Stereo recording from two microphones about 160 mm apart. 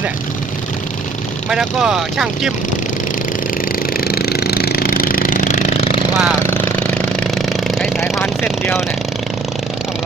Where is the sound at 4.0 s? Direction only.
75° left (ahead or behind); by 5.8 s 50° left (ahead or behind).